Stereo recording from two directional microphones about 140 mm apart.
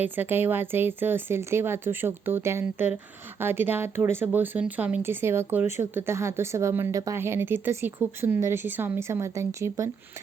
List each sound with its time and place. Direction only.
0.0 s speech: 15° right (ahead or behind)